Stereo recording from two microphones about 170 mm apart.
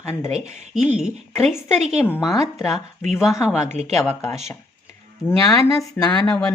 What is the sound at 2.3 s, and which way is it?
Speech, 20° left (ahead or behind).